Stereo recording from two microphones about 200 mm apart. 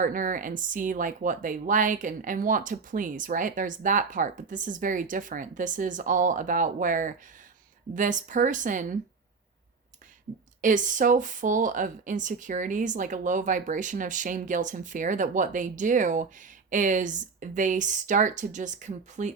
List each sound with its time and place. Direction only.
0.0 s speech: 40° right (ahead or behind)
10.6 s speech: 40° right (ahead or behind)